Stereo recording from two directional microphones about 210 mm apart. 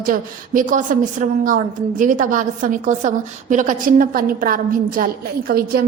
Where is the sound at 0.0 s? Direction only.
40° right (ahead or behind).